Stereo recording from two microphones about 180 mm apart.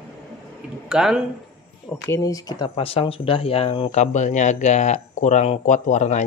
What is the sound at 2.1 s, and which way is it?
Speech, 20° left (ahead or behind).